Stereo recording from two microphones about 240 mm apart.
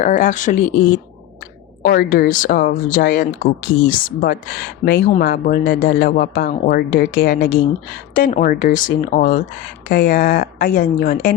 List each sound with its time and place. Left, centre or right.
0.0 s speech: left
1.8 s speech: left